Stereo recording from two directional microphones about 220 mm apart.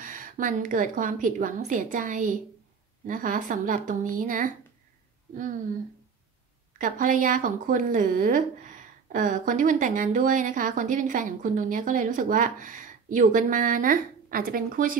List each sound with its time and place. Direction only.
0.0 s speech: 40° right (ahead or behind)
6.8 s speech: 35° right (ahead or behind)